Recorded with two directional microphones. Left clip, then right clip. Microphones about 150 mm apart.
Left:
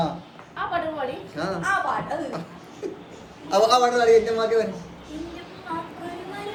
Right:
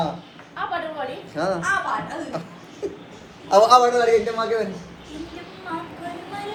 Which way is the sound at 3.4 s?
20° right (ahead or behind).